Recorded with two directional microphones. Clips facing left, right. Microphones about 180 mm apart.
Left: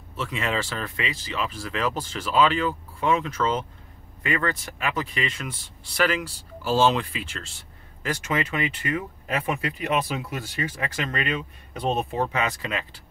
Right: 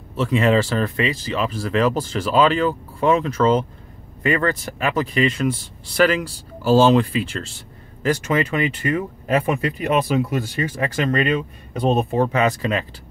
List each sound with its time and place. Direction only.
0.1 s speech: 35° right (ahead or behind)